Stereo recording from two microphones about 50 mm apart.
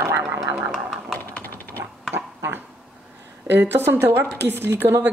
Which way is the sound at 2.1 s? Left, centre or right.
Right.